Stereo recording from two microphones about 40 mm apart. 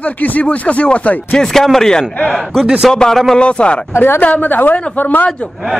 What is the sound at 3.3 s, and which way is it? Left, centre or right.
Speech, left.